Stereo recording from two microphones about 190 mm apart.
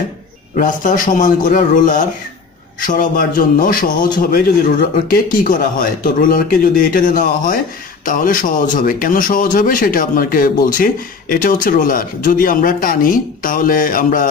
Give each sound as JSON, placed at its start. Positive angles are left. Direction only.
{"t": 0.6, "sound": "a man's voice", "side_deg": 45}